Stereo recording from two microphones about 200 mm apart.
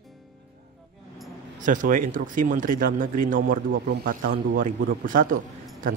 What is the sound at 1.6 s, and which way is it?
Speech, 40° right (ahead or behind).